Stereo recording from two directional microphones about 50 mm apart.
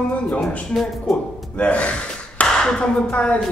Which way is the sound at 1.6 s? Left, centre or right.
Left.